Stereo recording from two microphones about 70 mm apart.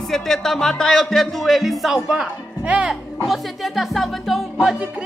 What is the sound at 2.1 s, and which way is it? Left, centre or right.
Speech, centre.